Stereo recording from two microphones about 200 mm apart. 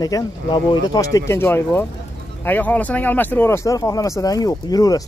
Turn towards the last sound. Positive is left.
turn(degrees=20)  # may be behind; listen again after turning